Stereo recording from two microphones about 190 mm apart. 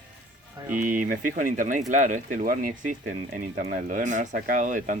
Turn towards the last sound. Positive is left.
turn(degrees=-45)  # may be behind; listen again after turning